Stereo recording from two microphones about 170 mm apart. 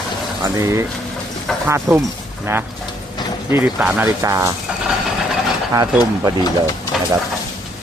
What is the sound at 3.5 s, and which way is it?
Speech, 10° right (ahead or behind).